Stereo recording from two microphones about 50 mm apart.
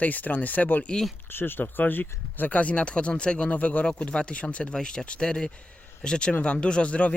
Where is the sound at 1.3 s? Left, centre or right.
Left.